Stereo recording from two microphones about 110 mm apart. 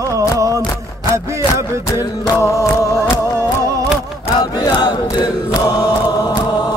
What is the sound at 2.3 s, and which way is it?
Music, 30° left (ahead or behind).